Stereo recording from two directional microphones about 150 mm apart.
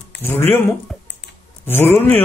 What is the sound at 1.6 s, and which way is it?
Speech, 15° left (ahead or behind).